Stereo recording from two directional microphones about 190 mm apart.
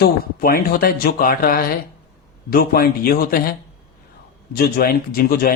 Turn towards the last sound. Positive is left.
turn(degrees=50)  # may be behind; listen again after turning